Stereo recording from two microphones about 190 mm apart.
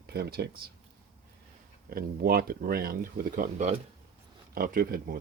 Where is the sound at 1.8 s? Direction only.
55° right (ahead or behind); by 3.8 s 40° right (ahead or behind).